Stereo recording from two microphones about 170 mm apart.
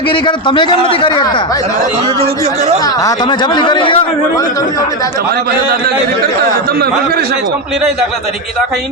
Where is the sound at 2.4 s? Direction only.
40° right (ahead or behind).